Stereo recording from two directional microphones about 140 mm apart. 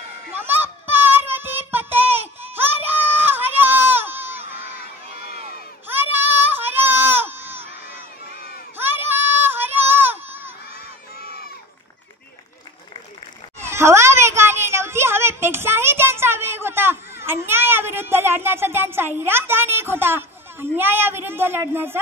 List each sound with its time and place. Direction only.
0.3 s children playing: 15° right (ahead or behind)
1.3 s child singing: 15° right (ahead or behind)
5.9 s child singing: 15° right (ahead or behind)
8.7 s child singing: 15° right (ahead or behind)
13.6 s a sound: 20° right (ahead or behind)